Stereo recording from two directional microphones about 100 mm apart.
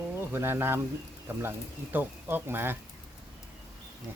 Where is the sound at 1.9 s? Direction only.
20° right (ahead or behind).